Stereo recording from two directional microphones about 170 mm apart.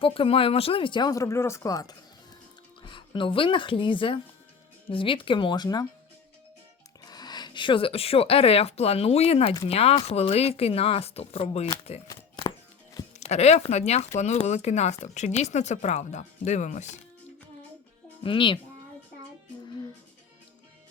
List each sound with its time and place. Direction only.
0.0 s speech: 30° left (ahead or behind)
7.0 s speech: 25° left (ahead or behind)
12.5 s music: 20° left (ahead or behind)
13.1 s speech: 40° left (ahead or behind)
18.2 s speech: 30° left (ahead or behind)